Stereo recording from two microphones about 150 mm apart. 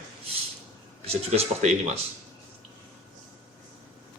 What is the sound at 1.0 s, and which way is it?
Speech, 45° right (ahead or behind).